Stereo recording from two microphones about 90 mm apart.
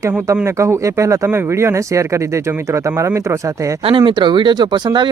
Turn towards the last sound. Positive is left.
turn(degrees=-55)  # may be behind; listen again after turning